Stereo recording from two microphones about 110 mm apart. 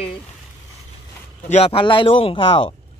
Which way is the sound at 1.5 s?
60° left (ahead or behind).